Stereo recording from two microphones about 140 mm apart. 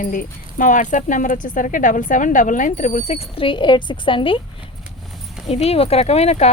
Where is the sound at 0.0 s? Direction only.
70° left (ahead or behind); by 4.4 s 35° left (ahead or behind).